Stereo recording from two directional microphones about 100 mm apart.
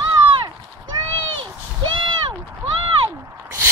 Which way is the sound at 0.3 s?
55° right (ahead or behind).